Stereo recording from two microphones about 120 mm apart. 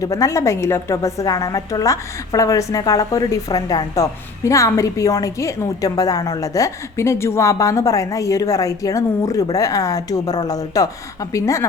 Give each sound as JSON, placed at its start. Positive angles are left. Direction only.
{"t": 0.0, "sound": "a woman's voice", "side_deg": 25}